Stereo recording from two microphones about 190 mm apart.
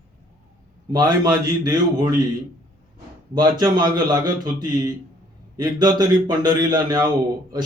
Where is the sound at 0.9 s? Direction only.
20° right (ahead or behind).